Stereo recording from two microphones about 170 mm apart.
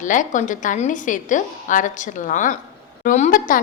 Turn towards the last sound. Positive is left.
turn(degrees=50)  # may be behind; listen again after turning